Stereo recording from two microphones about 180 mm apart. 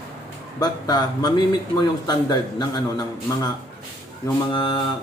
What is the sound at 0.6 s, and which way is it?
A man's voice, 20° left (ahead or behind).